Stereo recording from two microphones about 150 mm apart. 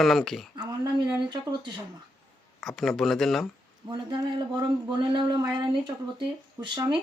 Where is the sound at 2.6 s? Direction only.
Centre (ahead or behind).